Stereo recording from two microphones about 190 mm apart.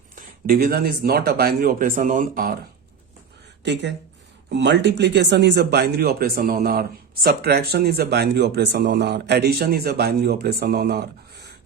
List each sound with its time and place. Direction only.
0.2 s speech: 50° right (ahead or behind)
3.6 s speech: 65° right (ahead or behind)